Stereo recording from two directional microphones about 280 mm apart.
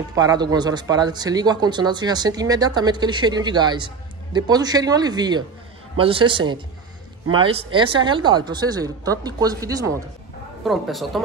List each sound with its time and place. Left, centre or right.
0.1 s speech: centre
10.6 s a woman's voice: centre